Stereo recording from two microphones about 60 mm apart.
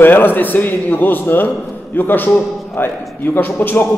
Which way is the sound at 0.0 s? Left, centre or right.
Left.